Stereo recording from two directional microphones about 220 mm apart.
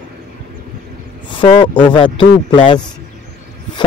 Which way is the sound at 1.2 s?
20° left (ahead or behind).